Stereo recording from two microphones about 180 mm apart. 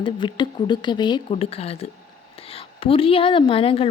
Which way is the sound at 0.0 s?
25° left (ahead or behind).